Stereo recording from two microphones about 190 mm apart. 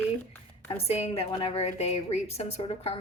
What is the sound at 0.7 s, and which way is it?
A woman's voice, 35° left (ahead or behind).